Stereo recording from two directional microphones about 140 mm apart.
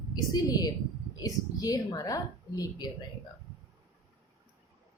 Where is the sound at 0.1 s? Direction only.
25° left (ahead or behind).